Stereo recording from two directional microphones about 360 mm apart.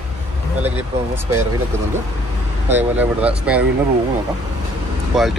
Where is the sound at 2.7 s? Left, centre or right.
Centre.